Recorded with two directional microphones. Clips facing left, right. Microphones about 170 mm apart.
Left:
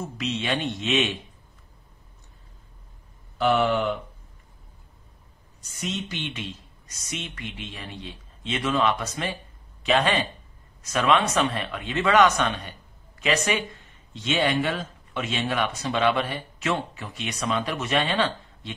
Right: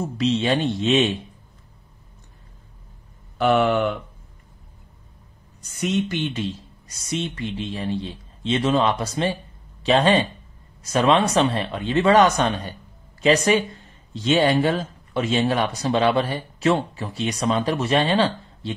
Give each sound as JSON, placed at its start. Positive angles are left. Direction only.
{"t": 0.2, "sound": "speech", "side_deg": -30}
{"t": 3.3, "sound": "speech", "side_deg": -60}
{"t": 5.8, "sound": "speech", "side_deg": -55}
{"t": 6.2, "sound": "speech", "side_deg": -35}